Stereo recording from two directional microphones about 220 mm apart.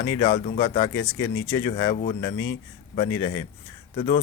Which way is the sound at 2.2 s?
10° left (ahead or behind).